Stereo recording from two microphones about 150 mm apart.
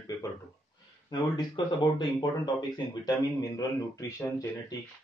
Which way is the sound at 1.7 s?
30° left (ahead or behind).